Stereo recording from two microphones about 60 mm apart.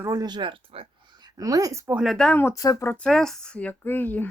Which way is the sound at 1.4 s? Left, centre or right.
Right.